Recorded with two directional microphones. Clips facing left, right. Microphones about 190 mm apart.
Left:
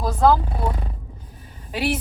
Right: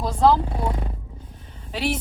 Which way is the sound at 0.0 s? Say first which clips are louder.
Left 1 dB; 5° left (ahead or behind).